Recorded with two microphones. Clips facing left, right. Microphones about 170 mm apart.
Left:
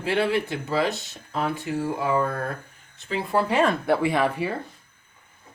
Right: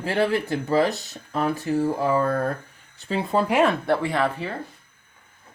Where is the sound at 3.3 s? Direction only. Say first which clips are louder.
Right 1 dB; 10° right (ahead or behind).